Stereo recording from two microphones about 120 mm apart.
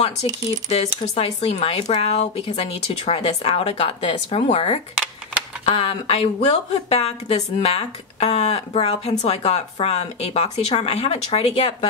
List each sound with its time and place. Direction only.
0.7 s speech: 65° left (ahead or behind)